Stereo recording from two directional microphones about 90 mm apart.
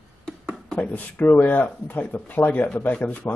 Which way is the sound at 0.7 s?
20° left (ahead or behind).